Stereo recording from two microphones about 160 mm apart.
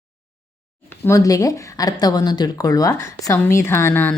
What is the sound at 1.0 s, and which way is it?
Speech, 20° left (ahead or behind).